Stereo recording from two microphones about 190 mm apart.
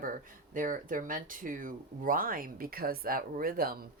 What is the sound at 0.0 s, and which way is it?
Speech, 45° right (ahead or behind).